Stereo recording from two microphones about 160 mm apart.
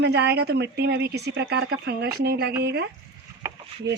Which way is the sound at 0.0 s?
90° right.